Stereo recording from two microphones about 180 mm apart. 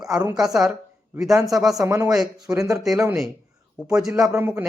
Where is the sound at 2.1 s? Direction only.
5° right (ahead or behind).